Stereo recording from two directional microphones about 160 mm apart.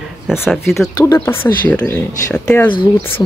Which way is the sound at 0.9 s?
20° left (ahead or behind).